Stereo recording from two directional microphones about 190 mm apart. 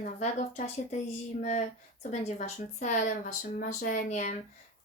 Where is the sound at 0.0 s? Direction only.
40° left (ahead or behind).